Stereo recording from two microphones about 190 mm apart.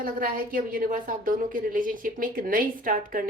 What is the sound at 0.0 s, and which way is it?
A woman's voice, 50° right (ahead or behind).